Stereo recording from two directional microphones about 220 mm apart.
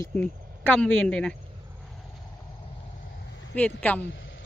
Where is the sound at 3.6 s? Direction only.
5° left (ahead or behind).